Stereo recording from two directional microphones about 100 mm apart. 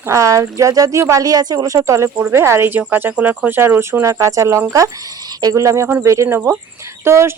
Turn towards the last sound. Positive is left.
turn(degrees=-25)  # may be behind; listen again after turning